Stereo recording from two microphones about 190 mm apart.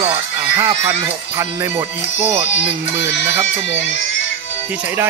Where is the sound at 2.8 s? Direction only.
75° left (ahead or behind).